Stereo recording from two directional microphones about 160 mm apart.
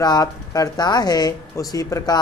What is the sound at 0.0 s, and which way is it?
Speech, 25° left (ahead or behind).